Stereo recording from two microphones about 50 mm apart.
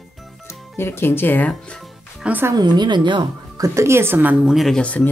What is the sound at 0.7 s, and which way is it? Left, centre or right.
Speech, left.